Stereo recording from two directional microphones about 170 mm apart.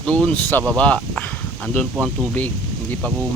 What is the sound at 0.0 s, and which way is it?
Speech, 5° left (ahead or behind).